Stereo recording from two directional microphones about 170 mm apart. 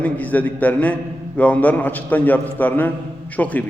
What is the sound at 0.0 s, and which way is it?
A man's voice, 10° left (ahead or behind).